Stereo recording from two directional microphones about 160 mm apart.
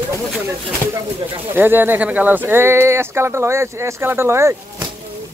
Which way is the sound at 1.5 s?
10° right (ahead or behind).